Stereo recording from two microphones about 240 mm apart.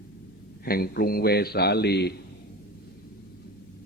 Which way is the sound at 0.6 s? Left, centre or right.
Left.